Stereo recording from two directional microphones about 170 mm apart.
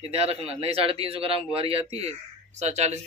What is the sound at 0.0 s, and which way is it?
A man's voice, 35° right (ahead or behind).